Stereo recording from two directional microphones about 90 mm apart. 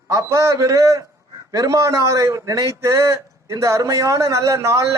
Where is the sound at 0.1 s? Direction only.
35° right (ahead or behind).